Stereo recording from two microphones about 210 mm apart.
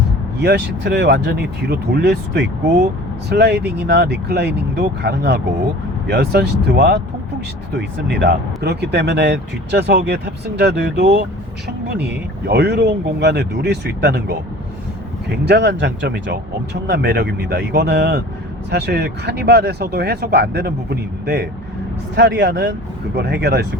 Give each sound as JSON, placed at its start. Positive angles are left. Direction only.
{"t": 0.3, "sound": "speech", "side_deg": -55}
{"t": 12.0, "sound": "speech", "side_deg": -50}